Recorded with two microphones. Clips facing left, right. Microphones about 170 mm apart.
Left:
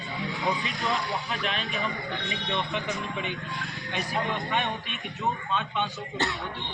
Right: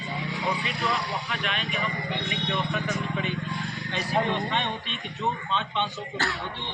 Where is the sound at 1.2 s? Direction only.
35° left (ahead or behind).